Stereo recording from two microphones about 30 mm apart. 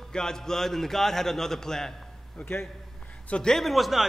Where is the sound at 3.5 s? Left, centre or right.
Centre.